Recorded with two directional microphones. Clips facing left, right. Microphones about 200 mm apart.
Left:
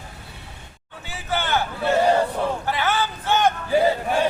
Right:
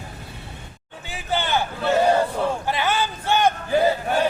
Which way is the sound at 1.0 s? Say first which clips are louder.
Right 1 dB; 15° right (ahead or behind).